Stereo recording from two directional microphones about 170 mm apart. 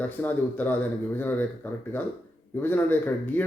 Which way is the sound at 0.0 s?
10° left (ahead or behind).